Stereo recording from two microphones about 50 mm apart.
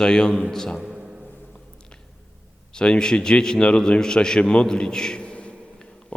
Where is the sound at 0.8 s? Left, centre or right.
Centre.